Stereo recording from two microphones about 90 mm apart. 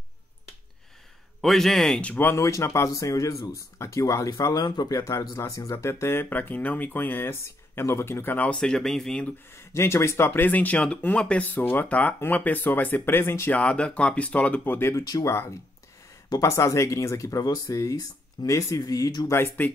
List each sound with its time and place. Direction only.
1.4 s a man's voice: 5° left (ahead or behind); by 2.4 s 25° left (ahead or behind)
2.4 s speech: 35° left (ahead or behind)
8.4 s speech: 10° left (ahead or behind)
9.5 s speech: 30° left (ahead or behind)
13.6 s speech: 10° left (ahead or behind)
15.0 s speech: 40° left (ahead or behind)
15.3 s speech: 30° left (ahead or behind)